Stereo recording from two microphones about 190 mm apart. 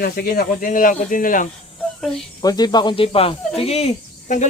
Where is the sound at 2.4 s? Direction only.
20° left (ahead or behind).